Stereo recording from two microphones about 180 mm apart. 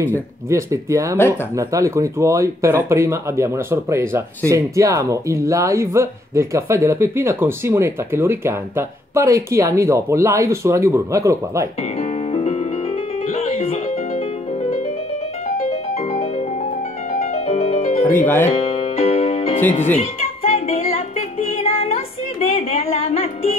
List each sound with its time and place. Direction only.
0.5 s speech: 15° right (ahead or behind)
12.0 s music: 35° left (ahead or behind)
18.0 s speech: 10° left (ahead or behind)
18.5 s music: 35° left (ahead or behind)
22.5 s music: 35° left (ahead or behind)